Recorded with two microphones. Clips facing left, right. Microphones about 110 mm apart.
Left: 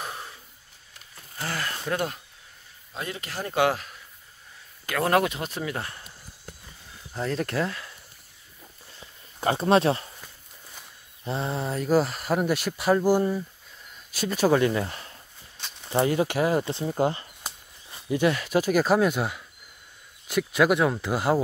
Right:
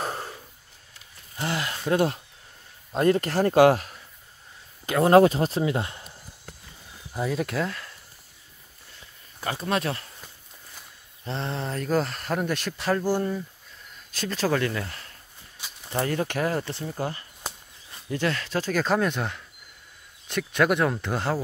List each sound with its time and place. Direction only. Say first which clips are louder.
0.0 s snort: right 5 dB; 40° right (ahead or behind)
1.3 s speech: right 2 dB; 20° right (ahead or behind)
2.9 s speech: right 13 dB; 45° right (ahead or behind)
4.8 s speech: right 7 dB; 25° right (ahead or behind)
7.2 s speech: even; 5° right (ahead or behind)
9.4 s speech: left 6 dB; 30° left (ahead or behind)
11.2 s speech: left 2 dB; 5° left (ahead or behind)
15.5 s a sound: left 1 dB; 10° right (ahead or behind)
15.9 s speech: left 4 dB; 15° left (ahead or behind)
17.9 s speech: left 4 dB; 10° left (ahead or behind)